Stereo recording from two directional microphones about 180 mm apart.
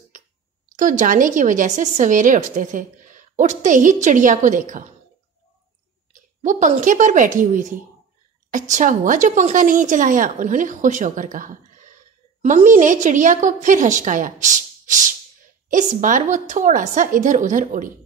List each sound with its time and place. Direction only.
0.7 s a woman's voice: 45° right (ahead or behind)
6.4 s a woman's voice: 45° right (ahead or behind)
15.7 s a woman's voice: 45° right (ahead or behind)